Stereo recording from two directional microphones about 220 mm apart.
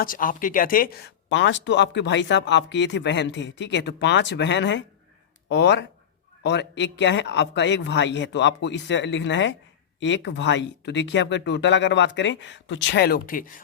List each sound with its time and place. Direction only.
0.0 s speech: 40° left (ahead or behind)